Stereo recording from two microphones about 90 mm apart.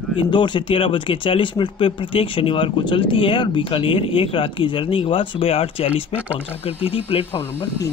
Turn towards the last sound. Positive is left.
turn(degrees=90)